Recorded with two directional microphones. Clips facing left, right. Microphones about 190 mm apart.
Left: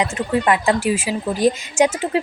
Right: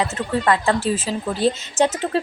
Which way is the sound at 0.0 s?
15° left (ahead or behind).